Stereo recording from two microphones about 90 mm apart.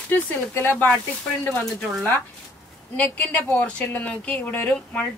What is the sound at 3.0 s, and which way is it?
A woman's voice, 15° left (ahead or behind).